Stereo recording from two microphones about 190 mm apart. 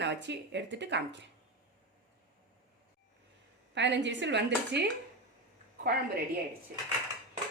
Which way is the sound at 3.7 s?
70° right (ahead or behind).